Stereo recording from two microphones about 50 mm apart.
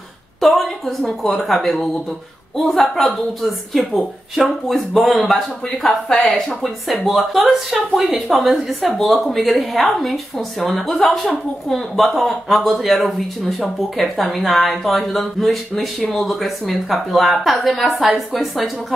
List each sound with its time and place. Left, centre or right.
0.4 s a woman's voice: centre
6.0 s speech: centre
6.6 s speech: centre